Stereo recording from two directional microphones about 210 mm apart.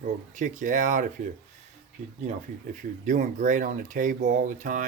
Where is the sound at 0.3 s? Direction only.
40° right (ahead or behind).